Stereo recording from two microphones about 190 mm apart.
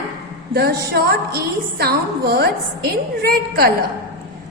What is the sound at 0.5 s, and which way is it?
A woman's voice, 55° right (ahead or behind).